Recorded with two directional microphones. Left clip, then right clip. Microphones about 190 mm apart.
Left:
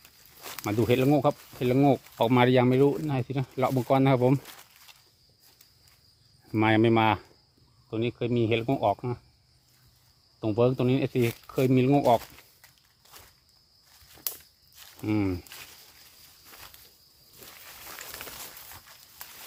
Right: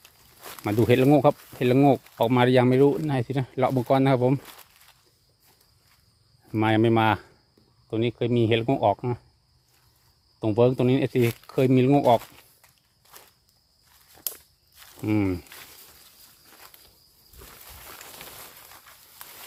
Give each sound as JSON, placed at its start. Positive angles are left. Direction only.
{"t": 0.6, "sound": "speech", "side_deg": -25}
{"t": 1.8, "sound": "speech", "side_deg": -20}
{"t": 2.1, "sound": "speech", "side_deg": -10}
{"t": 6.5, "sound": "speech", "side_deg": -5}
{"t": 7.9, "sound": "speech", "side_deg": -25}
{"t": 10.4, "sound": "speech", "side_deg": -25}
{"t": 13.1, "sound": "walk", "side_deg": -25}
{"t": 14.8, "sound": "walk", "side_deg": -20}